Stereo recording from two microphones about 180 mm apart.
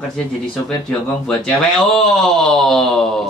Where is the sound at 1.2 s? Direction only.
5° left (ahead or behind).